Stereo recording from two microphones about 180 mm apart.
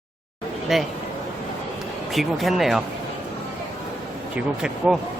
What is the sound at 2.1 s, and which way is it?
Speech, centre (ahead or behind).